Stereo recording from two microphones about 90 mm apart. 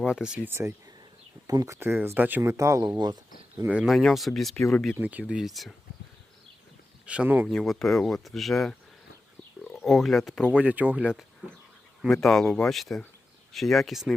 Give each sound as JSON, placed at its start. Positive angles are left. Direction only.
{"t": 0.1, "sound": "speech", "side_deg": -10}
{"t": 0.4, "sound": "speech", "side_deg": -25}
{"t": 1.5, "sound": "speech", "side_deg": -40}
{"t": 2.6, "sound": "speech", "side_deg": -40}
{"t": 3.7, "sound": "speech", "side_deg": -5}
{"t": 4.9, "sound": "speech", "side_deg": -15}
{"t": 5.3, "sound": "speech", "side_deg": -5}
{"t": 7.0, "sound": "speech", "side_deg": -15}
{"t": 7.4, "sound": "speech", "side_deg": 0}
{"t": 10.5, "sound": "speech", "side_deg": -15}
{"t": 12.1, "sound": "speech", "side_deg": 5}